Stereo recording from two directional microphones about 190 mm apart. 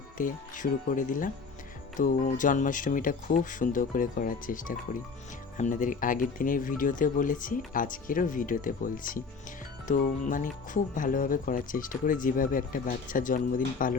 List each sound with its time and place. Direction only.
0.2 s speech: 45° left (ahead or behind)